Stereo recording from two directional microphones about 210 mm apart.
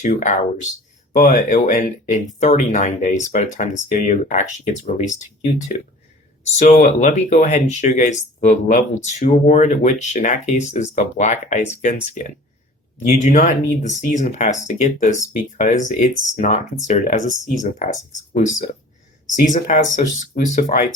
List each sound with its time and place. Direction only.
0.0 s speech: 35° left (ahead or behind)